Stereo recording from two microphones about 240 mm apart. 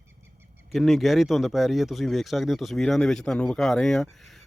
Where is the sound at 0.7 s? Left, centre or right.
Centre.